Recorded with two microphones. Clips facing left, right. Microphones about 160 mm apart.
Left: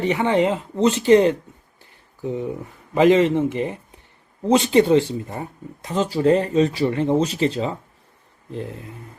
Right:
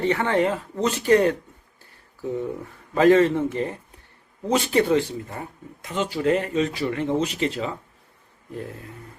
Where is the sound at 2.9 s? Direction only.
15° left (ahead or behind).